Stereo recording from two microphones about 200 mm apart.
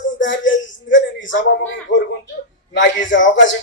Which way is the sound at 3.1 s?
70° left (ahead or behind).